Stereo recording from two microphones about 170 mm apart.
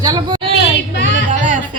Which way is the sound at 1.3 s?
50° right (ahead or behind).